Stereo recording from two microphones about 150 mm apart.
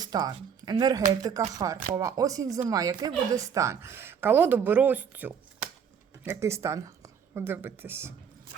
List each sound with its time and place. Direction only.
0.0 s a woman's voice: 25° right (ahead or behind)